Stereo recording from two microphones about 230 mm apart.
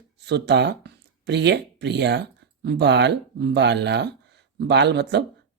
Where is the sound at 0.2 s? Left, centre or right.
Right.